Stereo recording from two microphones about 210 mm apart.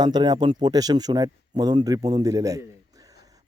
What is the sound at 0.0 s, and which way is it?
Speech, 20° right (ahead or behind).